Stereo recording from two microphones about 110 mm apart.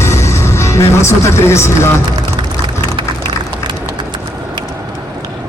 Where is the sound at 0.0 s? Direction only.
25° left (ahead or behind).